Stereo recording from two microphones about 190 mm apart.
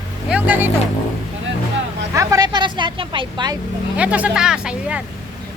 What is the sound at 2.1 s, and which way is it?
Speech, 15° right (ahead or behind).